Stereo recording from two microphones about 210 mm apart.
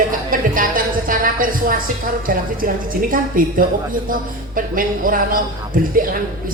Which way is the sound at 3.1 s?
40° right (ahead or behind).